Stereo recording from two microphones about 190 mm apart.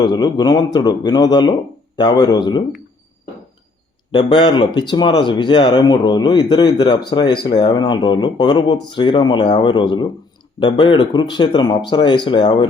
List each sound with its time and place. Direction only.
0.0 s speech: 20° left (ahead or behind)
4.1 s speech: 25° left (ahead or behind)